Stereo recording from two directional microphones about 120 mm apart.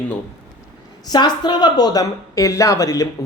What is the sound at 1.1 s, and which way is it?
A woman's voice, 35° left (ahead or behind).